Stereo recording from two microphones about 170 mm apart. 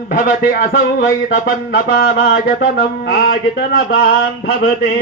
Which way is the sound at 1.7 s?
65° left (ahead or behind).